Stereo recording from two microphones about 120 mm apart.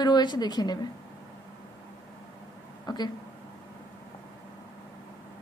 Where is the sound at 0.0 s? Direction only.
35° left (ahead or behind).